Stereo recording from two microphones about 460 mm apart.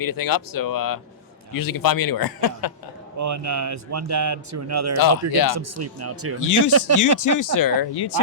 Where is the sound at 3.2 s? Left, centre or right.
Right.